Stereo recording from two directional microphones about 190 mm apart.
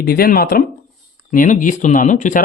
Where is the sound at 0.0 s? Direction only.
50° left (ahead or behind).